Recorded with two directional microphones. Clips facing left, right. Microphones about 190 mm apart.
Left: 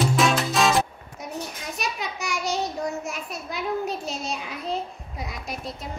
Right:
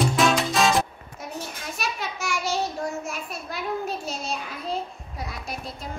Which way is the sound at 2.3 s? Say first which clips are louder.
Even; 20° left (ahead or behind).